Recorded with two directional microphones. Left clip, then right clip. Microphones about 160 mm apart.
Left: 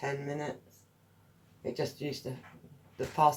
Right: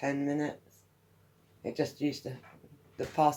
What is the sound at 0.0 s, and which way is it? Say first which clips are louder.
Speech: right 4 dB; 40° right (ahead or behind).